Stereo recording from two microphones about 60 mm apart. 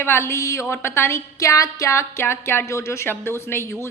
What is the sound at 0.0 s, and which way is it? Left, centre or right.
A woman's voice, left.